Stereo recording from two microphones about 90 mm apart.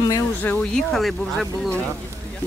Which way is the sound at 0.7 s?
Centre (ahead or behind).